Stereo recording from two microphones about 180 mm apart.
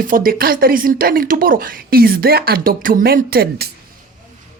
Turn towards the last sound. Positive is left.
turn(degrees=-55)  # may be behind; listen again after turning